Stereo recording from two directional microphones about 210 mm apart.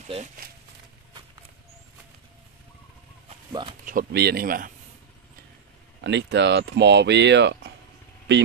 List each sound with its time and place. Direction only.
3.8 s speech: 45° right (ahead or behind)
5.9 s speech: 55° right (ahead or behind)